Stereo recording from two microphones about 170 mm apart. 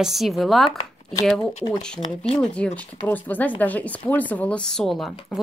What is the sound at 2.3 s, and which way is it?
Speech, 5° left (ahead or behind).